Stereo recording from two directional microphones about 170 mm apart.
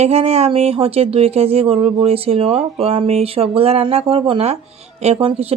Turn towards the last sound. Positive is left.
turn(degrees=-35)  # may be behind; listen again after turning